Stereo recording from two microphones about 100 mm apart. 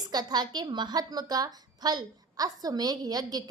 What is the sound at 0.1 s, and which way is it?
A woman's voice, 45° right (ahead or behind).